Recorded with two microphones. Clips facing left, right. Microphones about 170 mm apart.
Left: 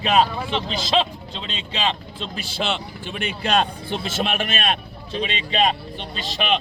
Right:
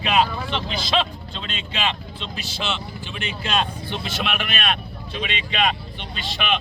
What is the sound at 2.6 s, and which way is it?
Speech, 50° left (ahead or behind).